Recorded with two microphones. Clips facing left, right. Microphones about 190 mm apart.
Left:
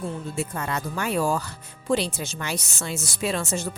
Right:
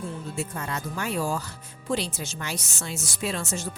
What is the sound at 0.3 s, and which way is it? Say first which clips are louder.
A woman's voice: left 3 dB; 70° left (ahead or behind).